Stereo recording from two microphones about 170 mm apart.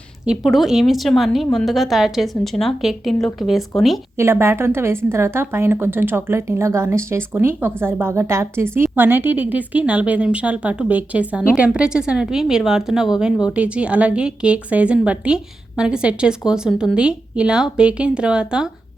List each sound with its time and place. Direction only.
0.3 s a woman's voice: centre (ahead or behind)
4.2 s a woman's voice: 15° right (ahead or behind)